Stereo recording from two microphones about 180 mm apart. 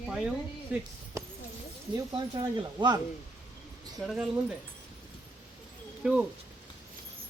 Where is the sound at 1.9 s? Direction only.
25° right (ahead or behind).